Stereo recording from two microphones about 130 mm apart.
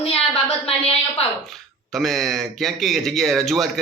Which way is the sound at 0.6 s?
50° left (ahead or behind).